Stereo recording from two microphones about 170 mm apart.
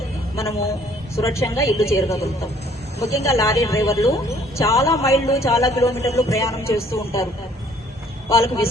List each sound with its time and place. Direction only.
0.3 s a man's voice: 15° left (ahead or behind)
3.2 s a man's voice: 15° left (ahead or behind)
5.8 s a man's voice: 40° left (ahead or behind)
6.2 s a man's voice: 20° left (ahead or behind)
8.3 s a man's voice: 15° left (ahead or behind)